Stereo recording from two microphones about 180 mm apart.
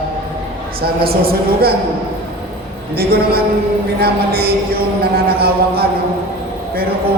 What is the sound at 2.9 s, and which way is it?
A woman's voice, 60° right (ahead or behind).